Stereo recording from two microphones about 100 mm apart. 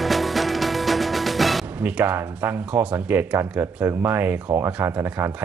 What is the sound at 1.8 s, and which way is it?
Speech, 15° right (ahead or behind).